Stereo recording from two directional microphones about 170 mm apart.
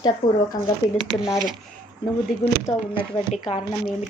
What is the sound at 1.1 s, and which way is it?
Speech, centre (ahead or behind).